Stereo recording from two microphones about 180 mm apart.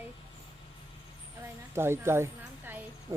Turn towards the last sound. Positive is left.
turn(degrees=-15)  # may be behind; listen again after turning